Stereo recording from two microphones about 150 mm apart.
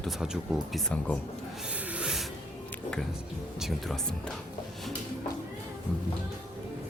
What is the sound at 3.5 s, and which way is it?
Speech, centre (ahead or behind).